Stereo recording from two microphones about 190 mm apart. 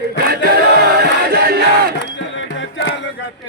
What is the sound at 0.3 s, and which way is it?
Chant, 55° right (ahead or behind).